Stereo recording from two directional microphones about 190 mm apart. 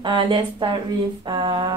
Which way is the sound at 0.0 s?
25° right (ahead or behind).